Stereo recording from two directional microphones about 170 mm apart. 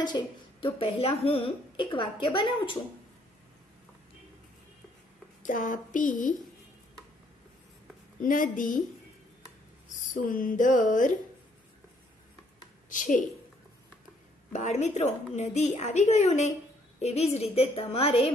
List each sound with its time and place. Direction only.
0.0 s a woman's voice: 30° left (ahead or behind)
5.4 s a woman's voice: 50° left (ahead or behind)
8.2 s a woman's voice: 55° left (ahead or behind)
10.1 s a woman's voice: 50° left (ahead or behind)
12.9 s a woman's voice: 50° left (ahead or behind)
14.5 s a woman's voice: 45° left (ahead or behind)